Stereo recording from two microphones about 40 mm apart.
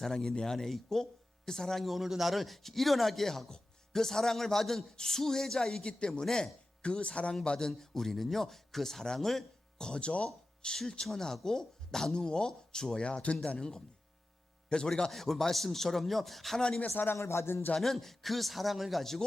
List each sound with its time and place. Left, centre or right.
0.1 s speech: centre
1.8 s speech: centre
6.8 s speech: left
7.7 s speech: centre
9.7 s speech: left
13.1 s speech: left
13.6 s speech: centre
14.7 s speech: centre
15.1 s speech: centre
16.6 s speech: centre
16.9 s music: left
17.7 s speech: centre